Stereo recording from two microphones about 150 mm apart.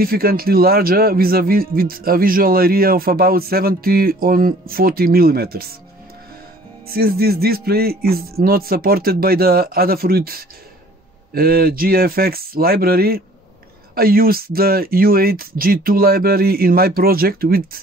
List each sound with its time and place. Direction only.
0.0 s a man's voice: 85° right
6.9 s a man's voice: 90° right